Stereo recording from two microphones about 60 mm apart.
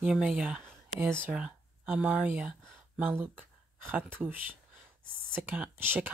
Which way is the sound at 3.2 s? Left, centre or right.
Right.